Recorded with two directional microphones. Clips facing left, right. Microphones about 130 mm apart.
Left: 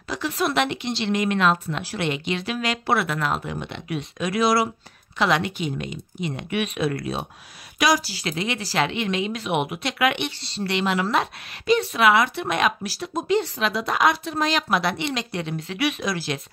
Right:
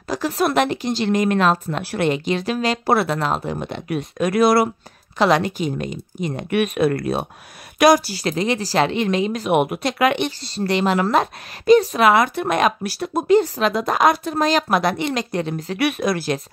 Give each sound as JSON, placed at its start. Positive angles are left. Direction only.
{"t": 0.1, "sound": "speech", "side_deg": -45}
{"t": 1.8, "sound": "speech", "side_deg": -60}
{"t": 2.0, "sound": "a woman's voice", "side_deg": -40}
{"t": 5.2, "sound": "a woman's voice", "side_deg": -40}
{"t": 12.8, "sound": "speech", "side_deg": -60}
{"t": 15.8, "sound": "speech", "side_deg": -55}